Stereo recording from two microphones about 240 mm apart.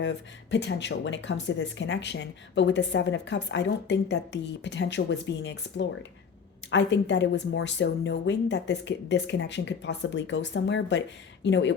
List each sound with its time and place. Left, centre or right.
0.0 s speech: left